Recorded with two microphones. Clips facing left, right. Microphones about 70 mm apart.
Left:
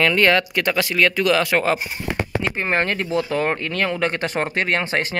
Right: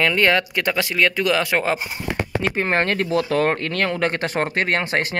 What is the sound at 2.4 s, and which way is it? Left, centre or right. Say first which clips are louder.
Speech: right 5 dB; right.